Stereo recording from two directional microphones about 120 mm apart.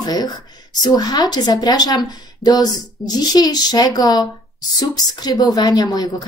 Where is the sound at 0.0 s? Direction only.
35° left (ahead or behind).